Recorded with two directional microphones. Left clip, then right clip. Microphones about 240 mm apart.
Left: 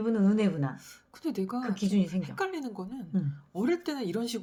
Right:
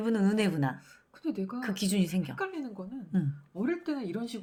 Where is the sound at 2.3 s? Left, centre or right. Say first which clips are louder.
Left 7 dB; left.